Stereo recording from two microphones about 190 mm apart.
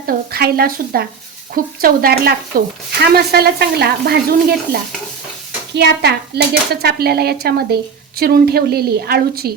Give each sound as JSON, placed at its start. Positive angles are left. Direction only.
{"t": 0.3, "sound": "a woman's voice", "side_deg": -55}